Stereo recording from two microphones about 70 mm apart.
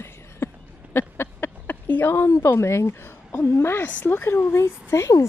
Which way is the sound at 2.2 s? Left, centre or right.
Left.